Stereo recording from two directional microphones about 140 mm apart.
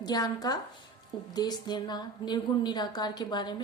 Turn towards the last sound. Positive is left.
turn(degrees=30)  # may be behind; listen again after turning